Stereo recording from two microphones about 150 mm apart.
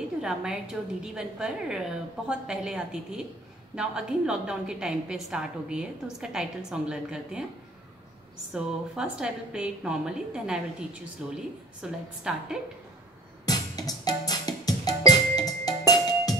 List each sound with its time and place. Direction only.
0.2 s a woman's voice: 5° right (ahead or behind)
8.5 s a woman's voice: 5° right (ahead or behind)
13.5 s music: 25° left (ahead or behind)